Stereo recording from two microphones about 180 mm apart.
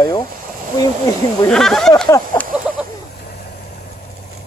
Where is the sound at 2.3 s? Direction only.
25° left (ahead or behind).